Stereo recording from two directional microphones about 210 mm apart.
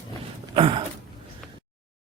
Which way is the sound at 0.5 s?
25° right (ahead or behind).